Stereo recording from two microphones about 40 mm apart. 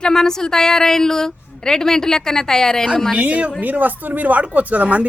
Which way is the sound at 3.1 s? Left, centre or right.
Right.